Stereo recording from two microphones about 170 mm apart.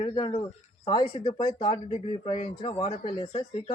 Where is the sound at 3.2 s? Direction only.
30° left (ahead or behind).